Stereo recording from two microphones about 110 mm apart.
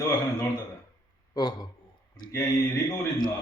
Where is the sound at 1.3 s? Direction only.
40° left (ahead or behind).